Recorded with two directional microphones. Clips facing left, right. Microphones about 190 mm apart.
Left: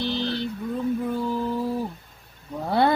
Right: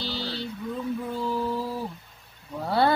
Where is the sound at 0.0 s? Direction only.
20° left (ahead or behind).